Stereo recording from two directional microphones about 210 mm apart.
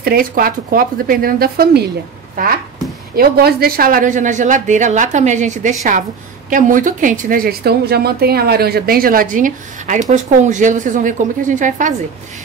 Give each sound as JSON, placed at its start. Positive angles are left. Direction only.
{"t": 0.0, "sound": "a woman's voice", "side_deg": -45}
{"t": 3.2, "sound": "a woman's voice", "side_deg": -45}